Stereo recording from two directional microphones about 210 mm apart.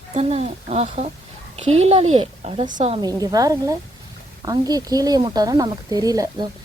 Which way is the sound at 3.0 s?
15° right (ahead or behind).